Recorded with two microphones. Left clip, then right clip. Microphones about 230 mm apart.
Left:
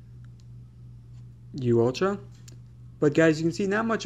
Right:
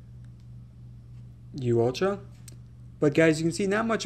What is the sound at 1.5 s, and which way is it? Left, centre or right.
Speech, centre.